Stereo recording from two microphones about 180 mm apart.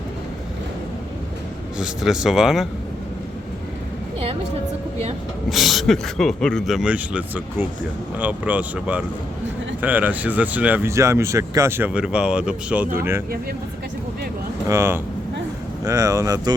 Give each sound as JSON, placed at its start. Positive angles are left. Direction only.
{"t": 1.8, "sound": "speech", "side_deg": -5}
{"t": 5.5, "sound": "speech", "side_deg": 0}
{"t": 14.7, "sound": "speech", "side_deg": -15}